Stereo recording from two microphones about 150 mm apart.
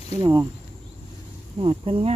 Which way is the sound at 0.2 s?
25° right (ahead or behind).